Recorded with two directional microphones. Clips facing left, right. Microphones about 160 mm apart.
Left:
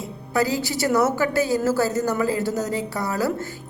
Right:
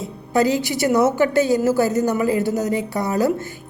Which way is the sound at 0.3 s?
20° right (ahead or behind).